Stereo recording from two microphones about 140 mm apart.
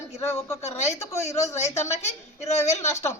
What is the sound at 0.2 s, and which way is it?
A woman's voice, 20° left (ahead or behind).